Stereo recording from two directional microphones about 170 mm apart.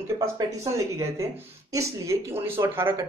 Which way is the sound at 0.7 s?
15° right (ahead or behind).